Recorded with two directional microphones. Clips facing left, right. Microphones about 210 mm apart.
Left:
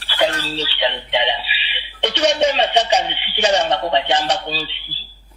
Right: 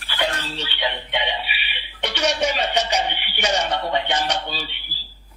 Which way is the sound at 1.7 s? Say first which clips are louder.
Left 8 dB; 25° left (ahead or behind).